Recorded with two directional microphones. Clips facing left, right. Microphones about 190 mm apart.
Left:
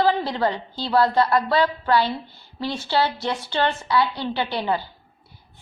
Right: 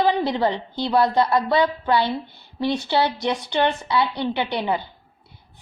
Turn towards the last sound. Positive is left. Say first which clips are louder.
# right 1 dB
turn(degrees=-20)  # may be behind; listen again after turning